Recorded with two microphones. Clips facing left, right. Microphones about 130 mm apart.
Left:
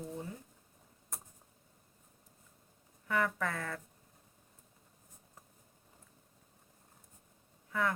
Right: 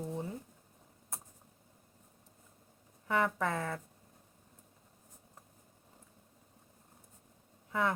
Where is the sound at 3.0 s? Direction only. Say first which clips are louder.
Right 2 dB; 20° right (ahead or behind).